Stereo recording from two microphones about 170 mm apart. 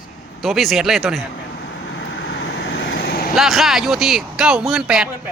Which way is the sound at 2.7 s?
80° left.